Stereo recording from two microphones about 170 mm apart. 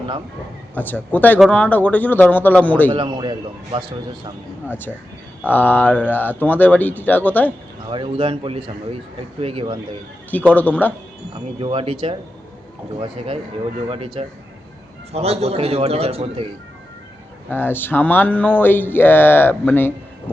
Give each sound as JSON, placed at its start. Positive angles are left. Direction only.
{"t": 0.7, "sound": "speech", "side_deg": 10}
{"t": 2.9, "sound": "a man's voice", "side_deg": -30}
{"t": 4.7, "sound": "speech", "side_deg": 10}
{"t": 7.9, "sound": "a man's voice", "side_deg": -30}
{"t": 10.5, "sound": "speech", "side_deg": 10}
{"t": 11.6, "sound": "a man's voice", "side_deg": -30}
{"t": 17.5, "sound": "speech", "side_deg": 10}
{"t": 20.3, "sound": "vehicle", "side_deg": 10}